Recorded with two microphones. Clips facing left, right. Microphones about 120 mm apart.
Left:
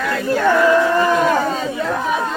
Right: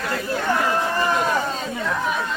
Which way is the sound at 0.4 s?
90° left.